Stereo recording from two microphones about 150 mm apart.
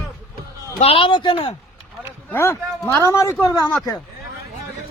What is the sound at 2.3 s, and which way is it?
Speech, 15° left (ahead or behind).